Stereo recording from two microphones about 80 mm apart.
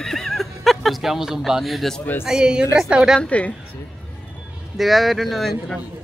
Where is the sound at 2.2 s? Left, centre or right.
Centre.